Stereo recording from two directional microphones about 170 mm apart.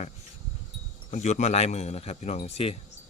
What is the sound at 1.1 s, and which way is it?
Speech, 45° left (ahead or behind).